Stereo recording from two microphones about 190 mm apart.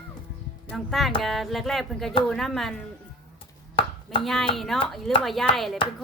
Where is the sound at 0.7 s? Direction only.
Centre (ahead or behind).